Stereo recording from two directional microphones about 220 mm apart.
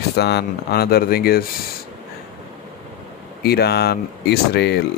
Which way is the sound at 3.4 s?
45° left (ahead or behind).